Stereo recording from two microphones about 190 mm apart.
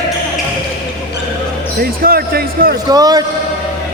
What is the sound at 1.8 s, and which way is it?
Speech, 50° right (ahead or behind).